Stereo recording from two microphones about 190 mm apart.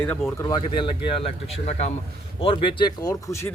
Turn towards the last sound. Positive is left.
turn(degrees=15)  # may be behind; listen again after turning